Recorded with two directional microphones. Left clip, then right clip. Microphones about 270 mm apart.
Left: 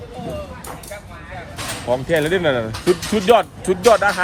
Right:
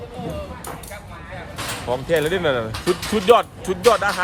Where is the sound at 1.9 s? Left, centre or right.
Centre.